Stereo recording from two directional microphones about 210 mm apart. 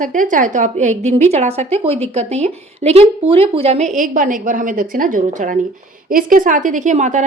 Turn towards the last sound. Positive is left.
turn(degrees=-35)  # may be behind; listen again after turning